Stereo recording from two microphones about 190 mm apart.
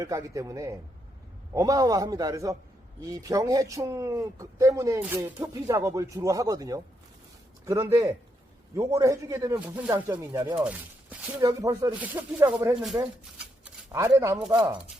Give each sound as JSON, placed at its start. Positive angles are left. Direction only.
{"t": 0.0, "sound": "a man's voice", "side_deg": -15}
{"t": 10.6, "sound": "a sound", "side_deg": -5}
{"t": 11.3, "sound": "a man's voice", "side_deg": -15}
{"t": 14.4, "sound": "speech", "side_deg": -5}